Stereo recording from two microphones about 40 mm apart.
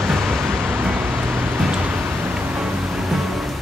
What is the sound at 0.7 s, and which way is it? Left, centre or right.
Vehicle, right.